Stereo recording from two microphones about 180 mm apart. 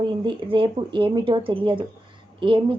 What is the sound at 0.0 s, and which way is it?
A woman's voice, 25° right (ahead or behind).